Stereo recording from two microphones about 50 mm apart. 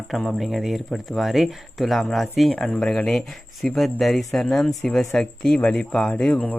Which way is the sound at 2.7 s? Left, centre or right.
Left.